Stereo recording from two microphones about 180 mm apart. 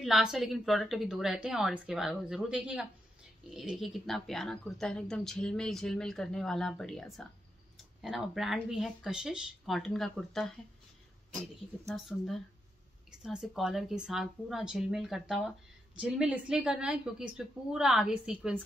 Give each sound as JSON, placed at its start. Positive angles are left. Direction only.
{"t": 0.0, "sound": "speech", "side_deg": 0}
{"t": 11.9, "sound": "speech", "side_deg": 0}